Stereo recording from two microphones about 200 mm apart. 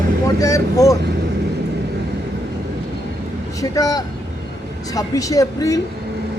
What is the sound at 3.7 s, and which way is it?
Speech, 20° left (ahead or behind).